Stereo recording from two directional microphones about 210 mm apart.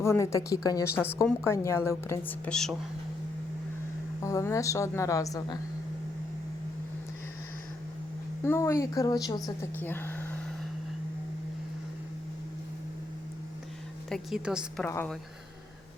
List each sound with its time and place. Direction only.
0.0 s a woman's voice: 15° left (ahead or behind)
4.2 s a woman's voice: 15° left (ahead or behind)
8.4 s a woman's voice: 15° left (ahead or behind)
14.1 s a woman's voice: centre (ahead or behind)
14.8 s a woman's voice: 10° left (ahead or behind)